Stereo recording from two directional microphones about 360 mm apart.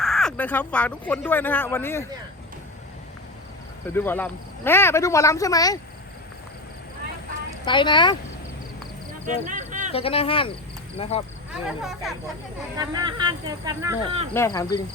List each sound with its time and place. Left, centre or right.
0.0 s speech: centre
3.8 s speech: centre
7.6 s speech: centre
9.2 s a sound: centre
9.9 s speech: centre
11.8 s speech: centre
14.3 s speech: centre